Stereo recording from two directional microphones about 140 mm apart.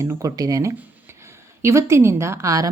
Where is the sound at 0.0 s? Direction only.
25° right (ahead or behind).